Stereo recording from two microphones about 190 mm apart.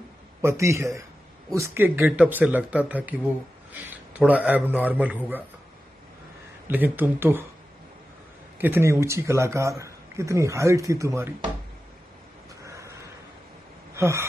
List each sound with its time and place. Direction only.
0.4 s speech: 15° right (ahead or behind)
6.7 s speech: 10° right (ahead or behind)
8.5 s speech: 10° right (ahead or behind)
12.6 s a sound: 15° right (ahead or behind)
13.9 s speech: 15° right (ahead or behind)